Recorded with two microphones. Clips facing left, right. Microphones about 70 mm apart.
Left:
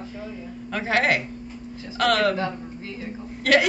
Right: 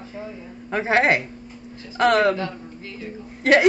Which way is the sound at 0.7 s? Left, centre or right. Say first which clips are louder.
Right 3 dB; right.